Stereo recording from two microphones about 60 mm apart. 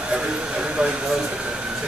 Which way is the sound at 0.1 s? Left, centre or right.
Centre.